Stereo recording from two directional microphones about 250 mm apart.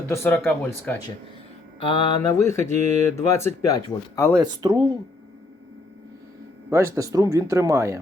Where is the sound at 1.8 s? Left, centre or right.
Centre.